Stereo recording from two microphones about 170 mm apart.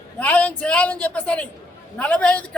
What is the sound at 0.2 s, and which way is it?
A woman's voice, 10° left (ahead or behind).